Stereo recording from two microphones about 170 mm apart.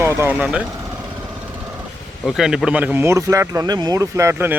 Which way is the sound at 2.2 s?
Centre (ahead or behind).